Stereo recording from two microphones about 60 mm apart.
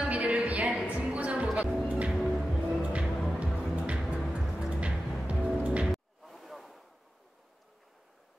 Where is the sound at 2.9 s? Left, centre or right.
Centre.